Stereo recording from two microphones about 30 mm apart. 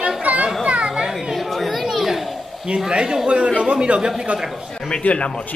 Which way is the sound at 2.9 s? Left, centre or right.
Right.